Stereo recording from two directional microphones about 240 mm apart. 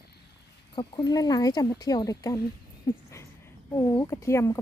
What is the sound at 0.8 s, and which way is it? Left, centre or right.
Speech, centre.